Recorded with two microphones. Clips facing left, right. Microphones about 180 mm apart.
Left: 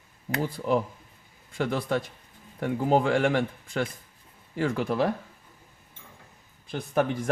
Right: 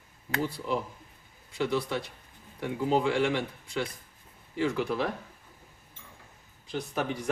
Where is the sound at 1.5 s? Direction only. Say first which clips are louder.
Left 2 dB; 50° left (ahead or behind).